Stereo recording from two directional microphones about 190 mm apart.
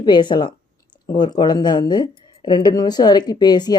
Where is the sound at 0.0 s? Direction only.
25° left (ahead or behind).